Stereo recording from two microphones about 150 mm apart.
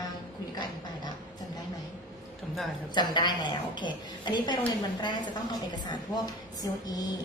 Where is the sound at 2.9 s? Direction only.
30° left (ahead or behind).